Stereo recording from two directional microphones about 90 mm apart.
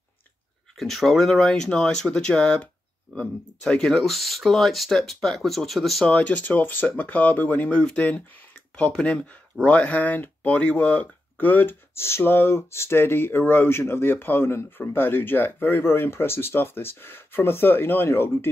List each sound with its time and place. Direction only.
0.7 s speech: centre (ahead or behind)
6.0 s speech: 15° left (ahead or behind)